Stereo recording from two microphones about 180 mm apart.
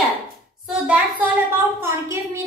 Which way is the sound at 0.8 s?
10° right (ahead or behind).